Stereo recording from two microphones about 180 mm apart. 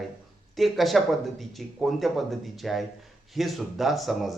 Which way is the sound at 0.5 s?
Centre (ahead or behind).